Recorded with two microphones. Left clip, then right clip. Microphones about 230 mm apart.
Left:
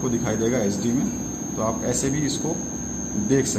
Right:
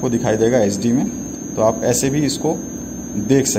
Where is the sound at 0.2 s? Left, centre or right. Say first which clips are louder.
Right 11 dB; right.